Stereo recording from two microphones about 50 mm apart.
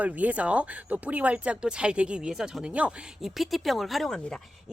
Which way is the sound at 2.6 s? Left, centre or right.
Right.